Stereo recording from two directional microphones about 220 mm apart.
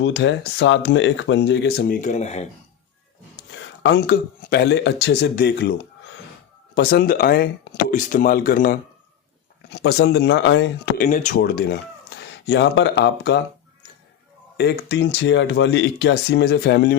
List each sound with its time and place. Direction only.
0.0 s speech: 55° left (ahead or behind); by 2.5 s 30° left (ahead or behind)
3.3 s speech: 55° left (ahead or behind)
6.7 s speech: 45° left (ahead or behind)
9.6 s speech: 50° left (ahead or behind)
11.1 s speech: 35° left (ahead or behind)
11.3 s speech: 45° left (ahead or behind)
14.5 s speech: 50° left (ahead or behind)